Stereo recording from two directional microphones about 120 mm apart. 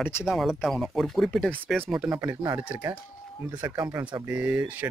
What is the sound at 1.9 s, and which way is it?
Speech, 5° right (ahead or behind).